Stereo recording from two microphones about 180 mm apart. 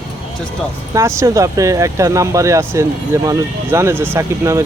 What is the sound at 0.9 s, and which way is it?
Speech, 15° right (ahead or behind).